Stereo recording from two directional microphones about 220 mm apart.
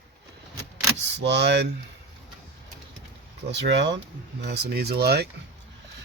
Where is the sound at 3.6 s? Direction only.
50° right (ahead or behind).